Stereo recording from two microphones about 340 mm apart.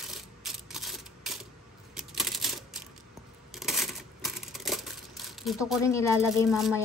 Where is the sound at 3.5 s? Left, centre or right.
Centre.